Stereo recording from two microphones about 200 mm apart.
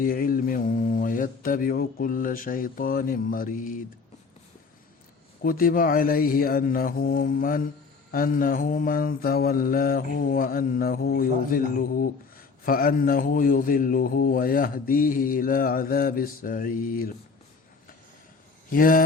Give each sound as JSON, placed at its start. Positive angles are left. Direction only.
{"t": 0.0, "sound": "speech", "side_deg": 45}
{"t": 5.4, "sound": "speech", "side_deg": 45}
{"t": 18.7, "sound": "speech", "side_deg": 45}